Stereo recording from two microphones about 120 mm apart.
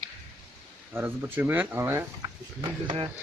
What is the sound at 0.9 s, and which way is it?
Speech, 20° right (ahead or behind).